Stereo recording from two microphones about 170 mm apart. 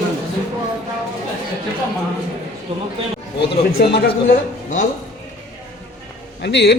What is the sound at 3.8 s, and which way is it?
Speech, 70° left (ahead or behind).